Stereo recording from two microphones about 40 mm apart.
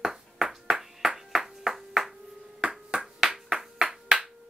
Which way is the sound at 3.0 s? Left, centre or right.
Centre.